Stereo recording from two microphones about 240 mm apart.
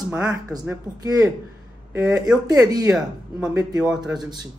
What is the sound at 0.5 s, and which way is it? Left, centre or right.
Speech, centre.